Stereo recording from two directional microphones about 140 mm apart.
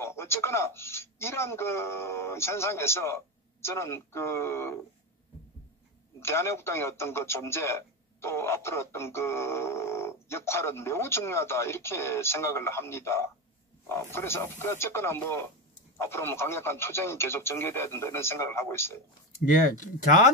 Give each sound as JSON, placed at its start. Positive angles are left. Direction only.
{"t": 0.0, "sound": "a man's voice", "side_deg": 20}
{"t": 6.1, "sound": "a man's voice", "side_deg": 20}
{"t": 19.5, "sound": "speech", "side_deg": 70}